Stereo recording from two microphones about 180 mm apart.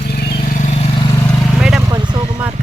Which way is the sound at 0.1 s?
60° left (ahead or behind).